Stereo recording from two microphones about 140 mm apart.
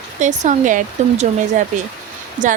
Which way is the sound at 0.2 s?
60° right (ahead or behind).